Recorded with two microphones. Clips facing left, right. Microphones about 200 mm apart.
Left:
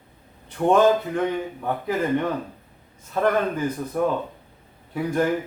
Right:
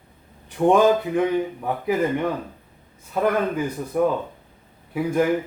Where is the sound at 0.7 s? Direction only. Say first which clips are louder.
Right 1 dB; 15° right (ahead or behind).